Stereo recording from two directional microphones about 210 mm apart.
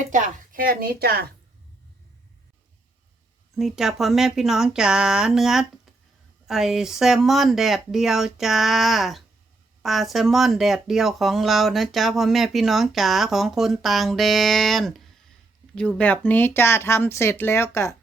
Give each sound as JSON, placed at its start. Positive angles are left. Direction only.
{"t": 0.1, "sound": "a woman's voice", "side_deg": -40}
{"t": 3.5, "sound": "speech", "side_deg": 0}